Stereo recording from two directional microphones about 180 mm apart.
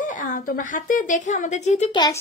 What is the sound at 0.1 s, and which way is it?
Speech, 45° left (ahead or behind).